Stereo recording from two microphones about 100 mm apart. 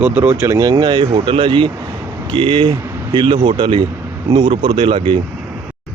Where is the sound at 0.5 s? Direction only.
40° right (ahead or behind).